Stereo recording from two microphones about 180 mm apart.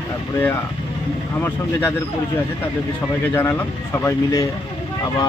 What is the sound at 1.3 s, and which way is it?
Speech, 10° left (ahead or behind).